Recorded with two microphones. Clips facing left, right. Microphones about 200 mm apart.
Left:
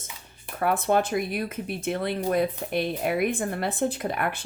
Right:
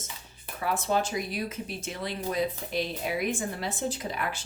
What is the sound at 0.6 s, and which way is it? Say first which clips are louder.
Speech: left 5 dB; 60° left (ahead or behind).